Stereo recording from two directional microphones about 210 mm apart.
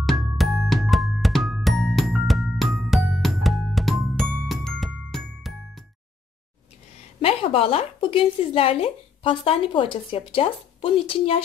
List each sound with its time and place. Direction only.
0.0 s music: centre (ahead or behind)
7.2 s a woman's voice: 25° left (ahead or behind)